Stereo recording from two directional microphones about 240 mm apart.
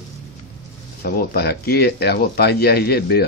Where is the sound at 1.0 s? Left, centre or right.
Left.